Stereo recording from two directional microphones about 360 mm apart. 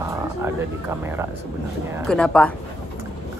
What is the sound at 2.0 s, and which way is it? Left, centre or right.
Speech, centre.